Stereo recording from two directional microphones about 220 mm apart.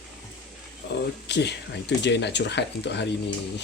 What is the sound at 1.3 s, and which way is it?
Speech, 50° left (ahead or behind).